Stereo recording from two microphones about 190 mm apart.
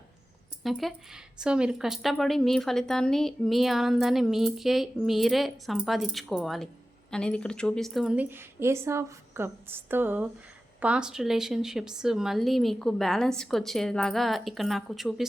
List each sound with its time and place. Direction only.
0.6 s speech: centre (ahead or behind)